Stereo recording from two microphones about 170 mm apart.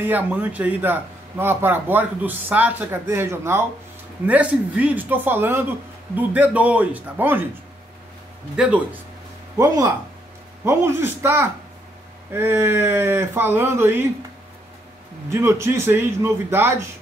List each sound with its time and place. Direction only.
0.0 s a man's voice: 10° right (ahead or behind)
8.5 s speech: 5° right (ahead or behind)
9.6 s a man's voice: 20° right (ahead or behind)
15.2 s a man's voice: 15° right (ahead or behind)